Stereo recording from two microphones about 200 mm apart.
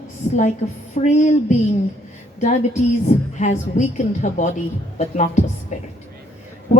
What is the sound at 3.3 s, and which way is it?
A woman's voice, 35° left (ahead or behind).